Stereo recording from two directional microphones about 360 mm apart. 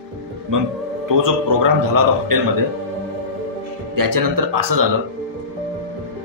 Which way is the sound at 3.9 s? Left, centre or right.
Right.